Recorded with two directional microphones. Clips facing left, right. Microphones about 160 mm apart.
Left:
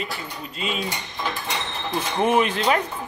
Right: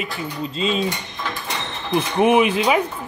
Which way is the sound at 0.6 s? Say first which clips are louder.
Right 6 dB; 25° right (ahead or behind).